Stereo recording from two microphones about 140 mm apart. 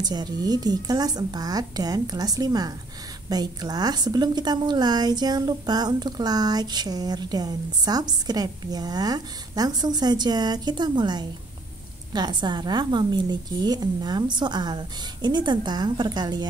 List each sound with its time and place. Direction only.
0.0 s a woman's voice: 30° right (ahead or behind)